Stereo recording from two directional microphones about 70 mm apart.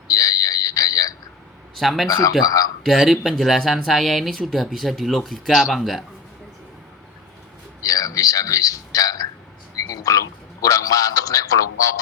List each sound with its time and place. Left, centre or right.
0.1 s fire alarm: left
1.7 s speech: centre
7.8 s a sound: left